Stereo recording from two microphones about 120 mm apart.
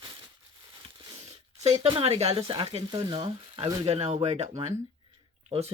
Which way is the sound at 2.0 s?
60° right (ahead or behind).